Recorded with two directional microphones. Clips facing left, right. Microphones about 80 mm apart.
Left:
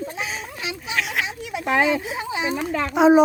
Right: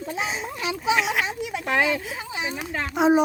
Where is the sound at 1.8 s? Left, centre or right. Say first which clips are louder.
Left 3 dB; left.